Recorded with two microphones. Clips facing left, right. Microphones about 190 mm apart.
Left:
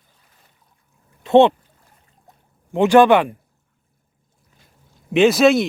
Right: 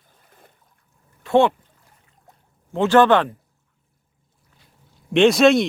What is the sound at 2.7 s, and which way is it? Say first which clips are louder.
Speech: left 3 dB; 15° left (ahead or behind).